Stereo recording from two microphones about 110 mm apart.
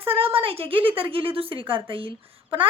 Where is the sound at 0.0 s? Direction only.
60° right (ahead or behind).